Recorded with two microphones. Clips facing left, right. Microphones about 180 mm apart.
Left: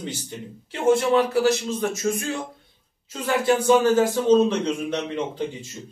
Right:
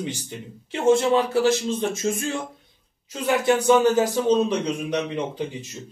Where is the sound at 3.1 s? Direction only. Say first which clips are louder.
Right 1 dB; 20° right (ahead or behind).